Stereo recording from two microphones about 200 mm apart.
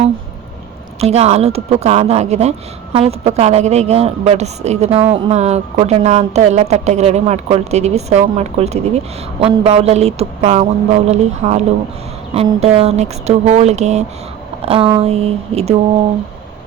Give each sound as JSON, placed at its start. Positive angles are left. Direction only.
{"t": 0.9, "sound": "a woman's voice", "side_deg": -30}